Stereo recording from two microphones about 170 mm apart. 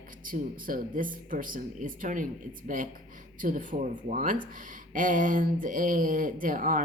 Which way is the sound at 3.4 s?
50° right (ahead or behind).